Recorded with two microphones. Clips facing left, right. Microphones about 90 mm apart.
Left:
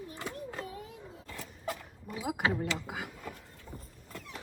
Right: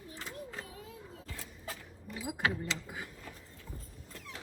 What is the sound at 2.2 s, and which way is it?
Vehicle, 75° left (ahead or behind).